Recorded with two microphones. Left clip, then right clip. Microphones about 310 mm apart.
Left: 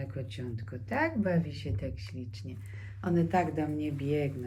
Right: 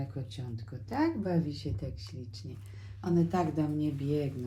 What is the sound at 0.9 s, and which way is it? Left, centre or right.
Speech, centre.